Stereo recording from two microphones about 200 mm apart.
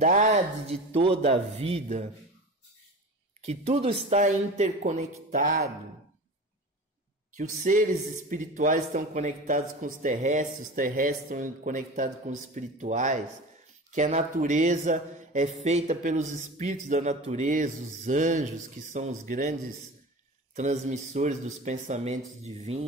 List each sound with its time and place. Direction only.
0.0 s speech: 40° right (ahead or behind)
3.4 s speech: 30° right (ahead or behind)
7.3 s speech: 40° right (ahead or behind)
20.5 s speech: 35° right (ahead or behind)